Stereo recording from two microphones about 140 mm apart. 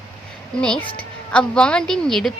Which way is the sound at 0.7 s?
35° left (ahead or behind).